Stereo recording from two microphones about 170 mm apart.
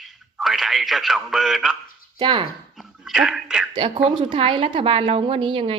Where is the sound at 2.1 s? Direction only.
30° right (ahead or behind).